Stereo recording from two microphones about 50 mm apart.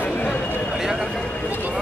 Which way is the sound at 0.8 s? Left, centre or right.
Centre.